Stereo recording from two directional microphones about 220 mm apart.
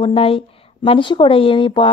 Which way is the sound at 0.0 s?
25° left (ahead or behind).